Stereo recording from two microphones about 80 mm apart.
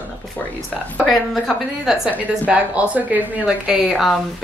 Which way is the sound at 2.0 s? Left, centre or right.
Centre.